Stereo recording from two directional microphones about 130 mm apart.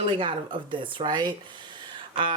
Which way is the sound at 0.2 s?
40° right (ahead or behind).